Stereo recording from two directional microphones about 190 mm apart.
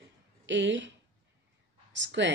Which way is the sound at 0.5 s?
75° right (ahead or behind).